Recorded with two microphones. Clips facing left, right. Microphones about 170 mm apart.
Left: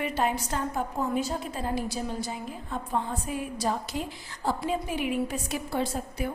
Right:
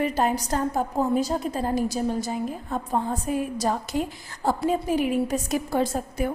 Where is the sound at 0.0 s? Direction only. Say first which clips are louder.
Right 4 dB; 40° right (ahead or behind).